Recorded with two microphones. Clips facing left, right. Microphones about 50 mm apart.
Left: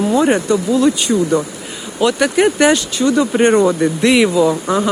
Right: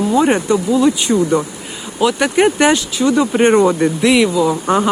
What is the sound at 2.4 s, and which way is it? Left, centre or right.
Speech, right.